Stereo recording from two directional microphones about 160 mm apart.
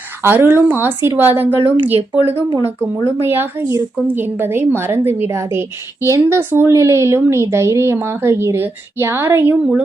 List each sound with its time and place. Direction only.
0.2 s speech: 10° right (ahead or behind)
1.6 s speech: 35° right (ahead or behind)
2.6 s speech: 15° right (ahead or behind)